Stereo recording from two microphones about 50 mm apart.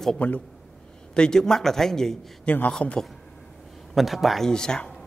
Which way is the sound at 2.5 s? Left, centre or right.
Left.